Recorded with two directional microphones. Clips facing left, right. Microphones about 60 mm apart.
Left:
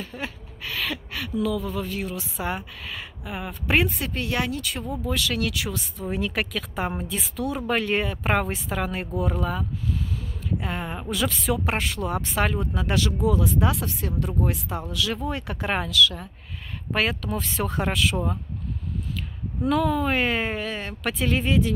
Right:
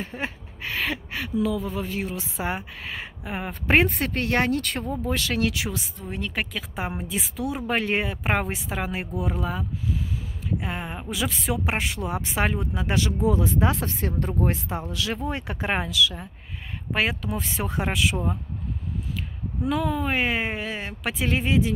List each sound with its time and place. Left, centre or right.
0.0 s speech: right
5.0 s speech: right
5.9 s speech: centre
6.7 s speech: centre
19.6 s speech: centre